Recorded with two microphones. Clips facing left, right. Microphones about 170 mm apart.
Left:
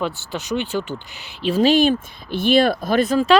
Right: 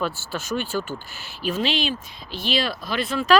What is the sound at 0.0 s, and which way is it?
Speech, 20° left (ahead or behind).